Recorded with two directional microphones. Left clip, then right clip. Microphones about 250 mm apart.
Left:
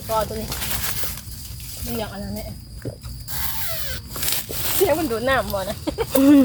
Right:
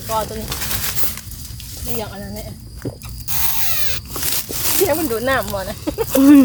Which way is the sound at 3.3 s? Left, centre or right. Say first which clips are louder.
Right 5 dB; right.